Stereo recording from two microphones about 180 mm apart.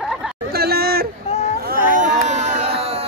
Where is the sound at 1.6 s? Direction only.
50° right (ahead or behind); by 3.0 s 35° right (ahead or behind).